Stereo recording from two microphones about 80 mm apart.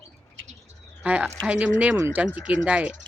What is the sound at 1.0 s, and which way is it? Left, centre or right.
Speech, centre.